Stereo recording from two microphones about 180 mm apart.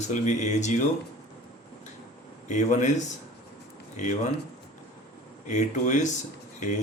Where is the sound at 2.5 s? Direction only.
40° left (ahead or behind).